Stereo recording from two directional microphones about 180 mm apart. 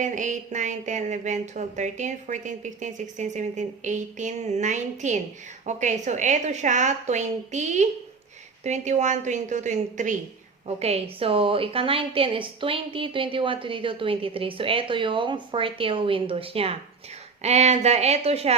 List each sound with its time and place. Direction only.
0.0 s a woman's voice: 45° right (ahead or behind)